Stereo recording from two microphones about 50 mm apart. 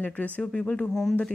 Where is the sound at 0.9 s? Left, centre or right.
Centre.